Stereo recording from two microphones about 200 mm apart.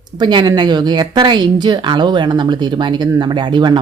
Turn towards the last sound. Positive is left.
turn(degrees=-25)  # may be behind; listen again after turning